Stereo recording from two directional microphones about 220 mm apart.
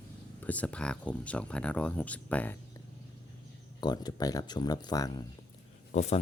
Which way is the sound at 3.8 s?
20° left (ahead or behind).